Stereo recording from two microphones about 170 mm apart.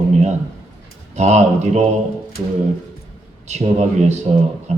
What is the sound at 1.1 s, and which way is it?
Speech, 40° right (ahead or behind).